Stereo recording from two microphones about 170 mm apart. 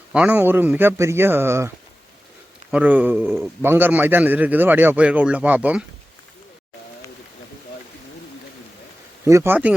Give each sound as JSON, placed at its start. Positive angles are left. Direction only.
{"t": 0.1, "sound": "a man's voice", "side_deg": -10}
{"t": 9.2, "sound": "a man's voice", "side_deg": -15}